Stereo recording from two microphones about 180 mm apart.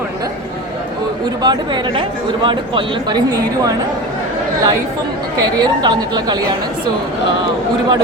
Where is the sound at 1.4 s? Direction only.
25° right (ahead or behind).